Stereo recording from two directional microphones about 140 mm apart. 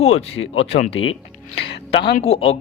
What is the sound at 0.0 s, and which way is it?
Speech, 45° left (ahead or behind).